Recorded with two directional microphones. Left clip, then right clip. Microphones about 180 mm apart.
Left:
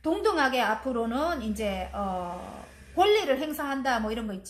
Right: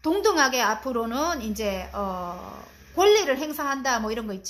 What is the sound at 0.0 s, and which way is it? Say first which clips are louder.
A woman's voice: right 4 dB; 40° right (ahead or behind).